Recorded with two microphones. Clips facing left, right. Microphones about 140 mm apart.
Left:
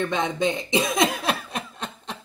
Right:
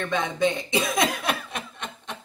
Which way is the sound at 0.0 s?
20° left (ahead or behind).